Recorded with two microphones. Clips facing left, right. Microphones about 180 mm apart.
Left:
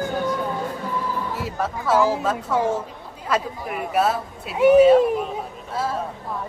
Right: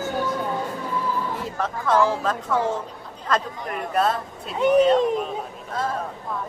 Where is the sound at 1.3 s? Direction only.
5° left (ahead or behind).